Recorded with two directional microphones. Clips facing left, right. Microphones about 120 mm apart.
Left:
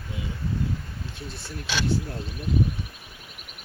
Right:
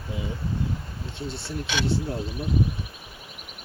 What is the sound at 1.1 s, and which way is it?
Speech, 25° right (ahead or behind).